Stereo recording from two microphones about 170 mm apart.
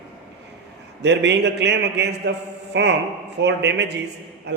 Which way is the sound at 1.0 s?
90° right.